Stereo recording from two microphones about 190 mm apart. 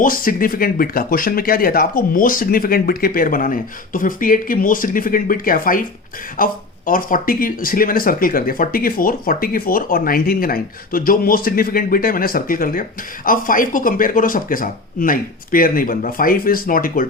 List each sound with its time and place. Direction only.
0.0 s speech: 45° left (ahead or behind)